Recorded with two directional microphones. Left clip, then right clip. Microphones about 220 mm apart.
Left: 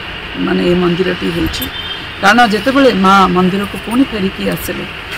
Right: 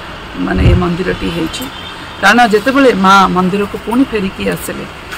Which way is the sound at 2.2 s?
5° right (ahead or behind).